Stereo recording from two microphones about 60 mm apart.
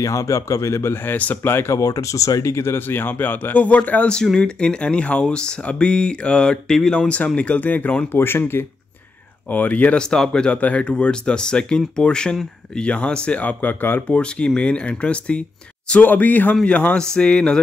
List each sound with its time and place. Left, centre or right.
0.0 s speech: left
1.0 s speech: left
1.7 s speech: left
8.1 s speech: left
9.5 s speech: left
10.0 s speech: centre; by 14.0 s left
14.0 s speech: centre